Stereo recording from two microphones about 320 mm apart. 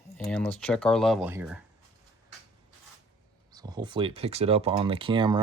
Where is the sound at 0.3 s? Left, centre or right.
Centre.